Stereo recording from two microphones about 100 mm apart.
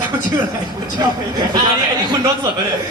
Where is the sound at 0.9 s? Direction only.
45° right (ahead or behind).